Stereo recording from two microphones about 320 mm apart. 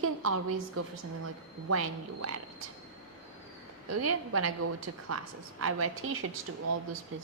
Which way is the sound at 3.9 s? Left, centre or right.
Right.